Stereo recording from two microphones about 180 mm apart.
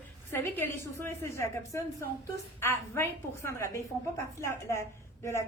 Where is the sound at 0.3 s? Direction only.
10° left (ahead or behind).